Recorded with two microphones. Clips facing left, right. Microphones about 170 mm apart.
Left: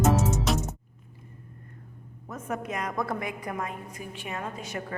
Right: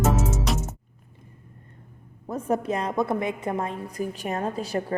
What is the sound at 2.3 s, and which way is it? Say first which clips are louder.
A woman's voice: right 8 dB; 30° right (ahead or behind).